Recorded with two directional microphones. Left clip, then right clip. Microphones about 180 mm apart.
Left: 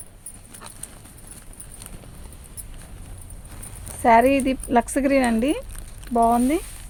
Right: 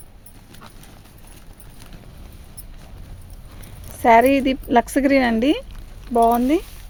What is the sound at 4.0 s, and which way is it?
Speech, 40° right (ahead or behind).